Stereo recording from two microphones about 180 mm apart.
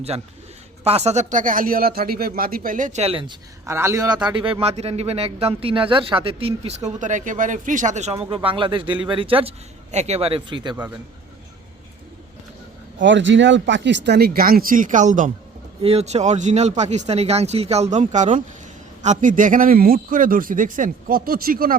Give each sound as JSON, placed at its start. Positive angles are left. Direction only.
{"t": 0.9, "sound": "a man's voice", "side_deg": -35}
{"t": 3.7, "sound": "a man's voice", "side_deg": -15}
{"t": 13.0, "sound": "speech", "side_deg": -85}
{"t": 15.8, "sound": "a man's voice", "side_deg": -35}